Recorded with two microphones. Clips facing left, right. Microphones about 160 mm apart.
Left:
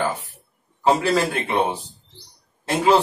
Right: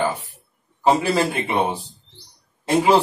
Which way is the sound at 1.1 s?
10° right (ahead or behind).